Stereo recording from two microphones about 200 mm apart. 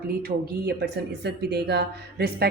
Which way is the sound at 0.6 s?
55° right (ahead or behind).